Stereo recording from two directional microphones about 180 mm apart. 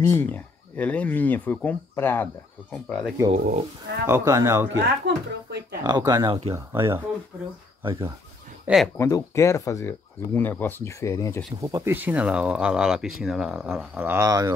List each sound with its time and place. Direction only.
0.0 s speech: 15° left (ahead or behind)
3.3 s speech: 45° right (ahead or behind)
4.0 s speech: 15° right (ahead or behind)
5.0 s speech: 65° right (ahead or behind)
5.9 s speech: 20° right (ahead or behind)
6.5 s speech: 15° right (ahead or behind)
7.8 s speech: 25° right (ahead or behind)
8.6 s speech: centre (ahead or behind)
8.9 s speech: 15° left (ahead or behind)
11.6 s speech: 15° right (ahead or behind)